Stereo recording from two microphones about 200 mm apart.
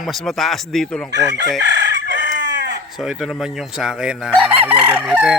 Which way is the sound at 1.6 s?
60° right (ahead or behind).